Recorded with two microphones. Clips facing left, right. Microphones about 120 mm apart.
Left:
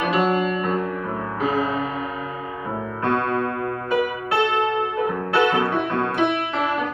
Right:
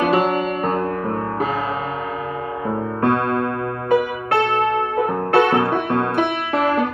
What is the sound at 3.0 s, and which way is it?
Music, 50° right (ahead or behind).